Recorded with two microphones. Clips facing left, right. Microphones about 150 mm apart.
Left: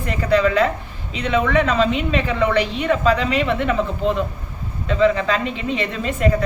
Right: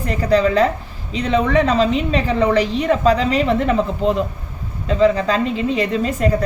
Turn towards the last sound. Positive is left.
turn(degrees=-35)  # may be behind; listen again after turning